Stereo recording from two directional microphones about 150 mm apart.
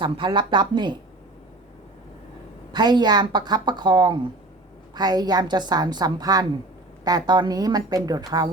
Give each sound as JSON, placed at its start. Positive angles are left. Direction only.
{"t": 0.0, "sound": "speech", "side_deg": -35}
{"t": 2.7, "sound": "a woman's voice", "side_deg": -30}